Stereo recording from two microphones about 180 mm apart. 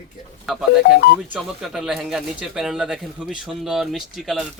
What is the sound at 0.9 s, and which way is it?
Speech, 60° left (ahead or behind).